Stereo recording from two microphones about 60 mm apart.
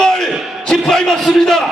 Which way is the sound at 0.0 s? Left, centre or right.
Centre.